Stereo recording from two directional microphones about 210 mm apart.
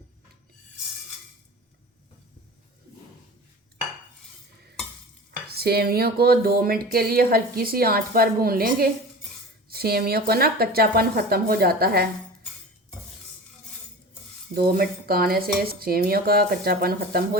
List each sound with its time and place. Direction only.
5.5 s speech: 50° right (ahead or behind)
14.5 s speech: 45° right (ahead or behind)